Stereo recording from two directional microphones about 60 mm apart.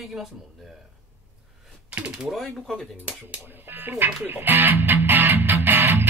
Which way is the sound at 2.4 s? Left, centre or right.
Centre.